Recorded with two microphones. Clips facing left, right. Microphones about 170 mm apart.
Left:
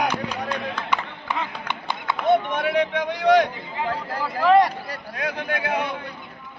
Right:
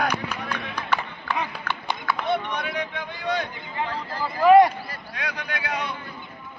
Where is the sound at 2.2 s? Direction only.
45° left (ahead or behind); by 3.5 s 85° left.